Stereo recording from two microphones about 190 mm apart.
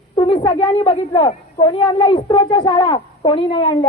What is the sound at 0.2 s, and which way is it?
A woman's voice, 25° left (ahead or behind).